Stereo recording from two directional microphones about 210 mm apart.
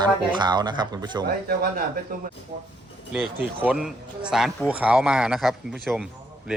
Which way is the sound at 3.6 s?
5° right (ahead or behind).